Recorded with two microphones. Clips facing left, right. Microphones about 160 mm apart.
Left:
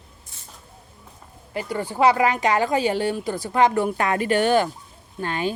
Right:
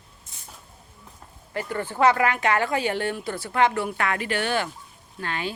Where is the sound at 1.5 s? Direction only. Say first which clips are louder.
Left 2 dB; 15° left (ahead or behind).